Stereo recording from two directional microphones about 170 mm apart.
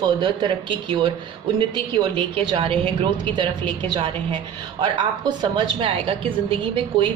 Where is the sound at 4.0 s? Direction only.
30° right (ahead or behind).